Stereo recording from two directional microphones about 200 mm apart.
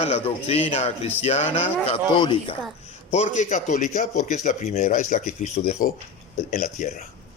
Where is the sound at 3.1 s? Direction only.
35° left (ahead or behind).